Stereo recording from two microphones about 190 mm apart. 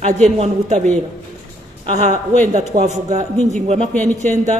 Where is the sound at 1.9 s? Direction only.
40° right (ahead or behind).